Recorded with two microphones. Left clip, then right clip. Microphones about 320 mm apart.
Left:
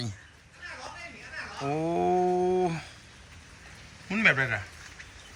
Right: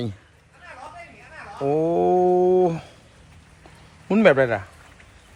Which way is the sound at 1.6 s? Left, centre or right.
Centre.